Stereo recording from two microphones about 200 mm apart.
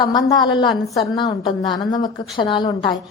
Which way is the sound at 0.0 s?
20° left (ahead or behind).